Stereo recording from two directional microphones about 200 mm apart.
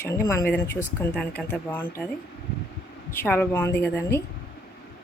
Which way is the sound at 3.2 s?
10° left (ahead or behind).